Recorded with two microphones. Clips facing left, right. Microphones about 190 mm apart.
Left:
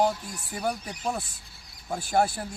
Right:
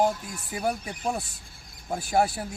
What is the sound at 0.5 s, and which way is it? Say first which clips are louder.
Speech: right 2 dB; 10° right (ahead or behind).